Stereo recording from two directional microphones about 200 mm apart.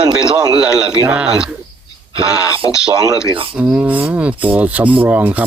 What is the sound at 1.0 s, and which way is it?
Speech, 5° right (ahead or behind).